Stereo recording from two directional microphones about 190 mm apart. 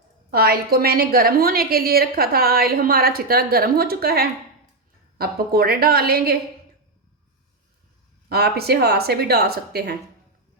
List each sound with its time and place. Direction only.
0.3 s a woman's voice: 55° right (ahead or behind)
8.3 s speech: 55° right (ahead or behind)